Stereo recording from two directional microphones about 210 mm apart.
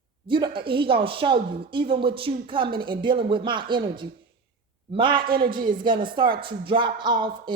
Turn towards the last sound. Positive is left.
turn(degrees=-20)  # may be behind; listen again after turning